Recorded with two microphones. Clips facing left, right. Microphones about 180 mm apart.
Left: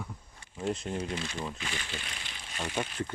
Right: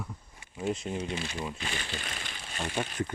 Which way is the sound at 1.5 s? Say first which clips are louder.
Right 2 dB; 40° right (ahead or behind).